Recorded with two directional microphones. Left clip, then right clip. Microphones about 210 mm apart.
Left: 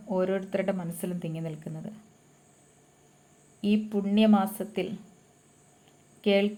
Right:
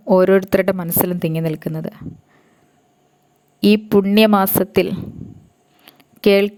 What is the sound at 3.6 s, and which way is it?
Speech, 50° right (ahead or behind).